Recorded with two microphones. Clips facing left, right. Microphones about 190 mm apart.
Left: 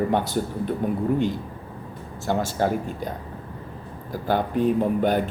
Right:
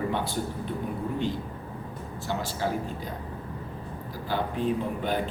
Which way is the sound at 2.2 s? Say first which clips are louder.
Left 7 dB; 50° left (ahead or behind).